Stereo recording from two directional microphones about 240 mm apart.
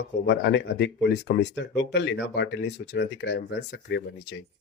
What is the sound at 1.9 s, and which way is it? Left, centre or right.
Speech, left.